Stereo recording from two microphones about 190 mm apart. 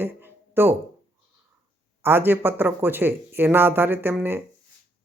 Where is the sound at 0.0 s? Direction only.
10° right (ahead or behind).